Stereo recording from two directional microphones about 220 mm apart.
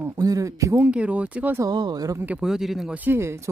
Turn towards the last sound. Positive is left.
turn(degrees=-10)  # may be behind; listen again after turning